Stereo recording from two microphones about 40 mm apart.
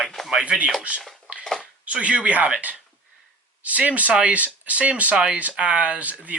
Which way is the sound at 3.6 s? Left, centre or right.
Right.